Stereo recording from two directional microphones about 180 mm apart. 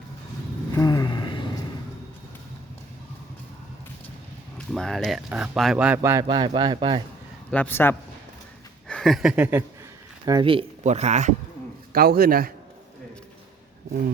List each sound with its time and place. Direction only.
0.7 s a sound: 20° left (ahead or behind)
4.5 s speech: 5° left (ahead or behind)
6.0 s speech: 15° right (ahead or behind)
7.5 s speech: 10° left (ahead or behind); by 9.6 s 10° right (ahead or behind)
10.2 s speech: 25° right (ahead or behind)
11.9 s a man's voice: 55° right (ahead or behind)